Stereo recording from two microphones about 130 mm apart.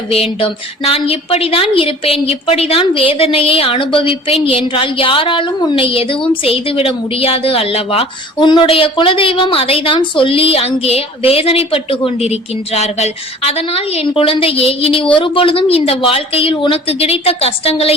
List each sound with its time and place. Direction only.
0.1 s a woman's voice: 45° left (ahead or behind)